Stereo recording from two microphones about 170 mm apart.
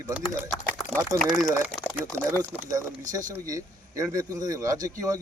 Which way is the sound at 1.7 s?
5° left (ahead or behind).